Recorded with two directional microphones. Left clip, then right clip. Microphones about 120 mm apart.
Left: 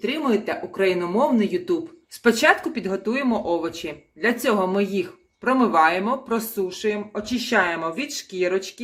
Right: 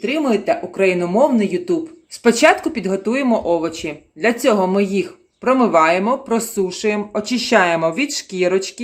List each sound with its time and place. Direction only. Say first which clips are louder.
0.0 s speech: right 5 dB; 25° right (ahead or behind)